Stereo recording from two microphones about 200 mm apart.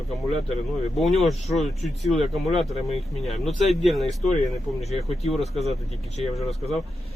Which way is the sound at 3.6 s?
Centre (ahead or behind).